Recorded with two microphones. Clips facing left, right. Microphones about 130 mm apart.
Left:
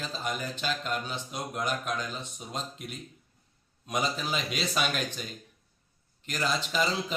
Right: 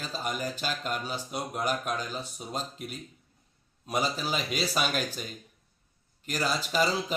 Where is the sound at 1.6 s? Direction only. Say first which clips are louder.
Right 1 dB; 40° right (ahead or behind).